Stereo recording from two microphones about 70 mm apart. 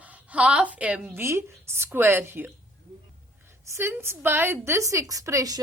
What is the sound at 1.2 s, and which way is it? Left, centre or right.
A woman's voice, right.